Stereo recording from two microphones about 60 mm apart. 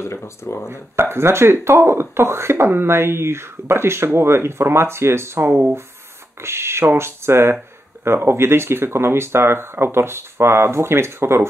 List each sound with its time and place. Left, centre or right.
0.4 s speech: left
0.7 s speech: right